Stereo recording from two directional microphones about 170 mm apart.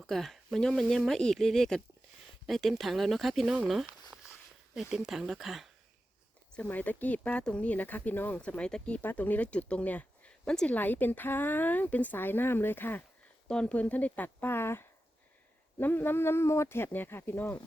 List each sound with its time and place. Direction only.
0.0 s speech: centre (ahead or behind)
6.5 s speech: 10° left (ahead or behind)